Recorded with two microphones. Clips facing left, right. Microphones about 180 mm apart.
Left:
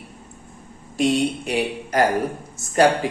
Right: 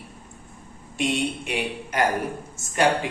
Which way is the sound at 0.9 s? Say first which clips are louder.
Left 5 dB; 35° left (ahead or behind).